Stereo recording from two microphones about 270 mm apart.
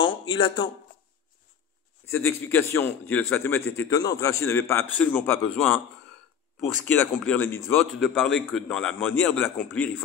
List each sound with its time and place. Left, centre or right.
0.0 s a sound: centre
2.1 s a man's voice: centre
6.6 s a man's voice: centre